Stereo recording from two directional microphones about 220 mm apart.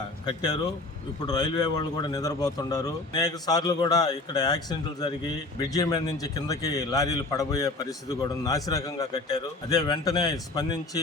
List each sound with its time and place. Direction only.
0.3 s a man's voice: 20° left (ahead or behind)